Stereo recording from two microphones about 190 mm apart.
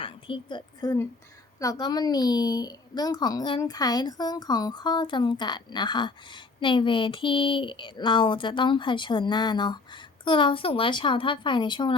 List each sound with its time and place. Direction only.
0.0 s a woman's voice: 25° left (ahead or behind)